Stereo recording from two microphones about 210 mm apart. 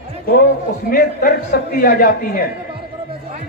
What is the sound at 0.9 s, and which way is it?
A man's voice, 45° left (ahead or behind).